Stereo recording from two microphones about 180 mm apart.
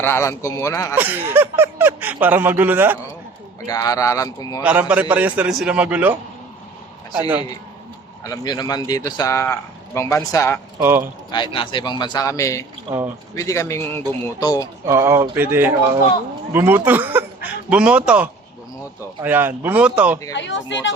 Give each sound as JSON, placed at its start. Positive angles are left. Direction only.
{"t": 0.0, "sound": "a man's voice", "side_deg": 15}
{"t": 0.9, "sound": "speech", "side_deg": -10}
{"t": 3.7, "sound": "a man's voice", "side_deg": 20}
{"t": 4.6, "sound": "speech", "side_deg": -10}
{"t": 8.2, "sound": "a man's voice", "side_deg": 20}
{"t": 10.8, "sound": "speech", "side_deg": -10}
{"t": 11.3, "sound": "speech", "side_deg": 25}
{"t": 12.9, "sound": "speech", "side_deg": -30}
{"t": 13.3, "sound": "a man's voice", "side_deg": 15}
{"t": 14.8, "sound": "speech", "side_deg": -15}
{"t": 20.3, "sound": "speech", "side_deg": 90}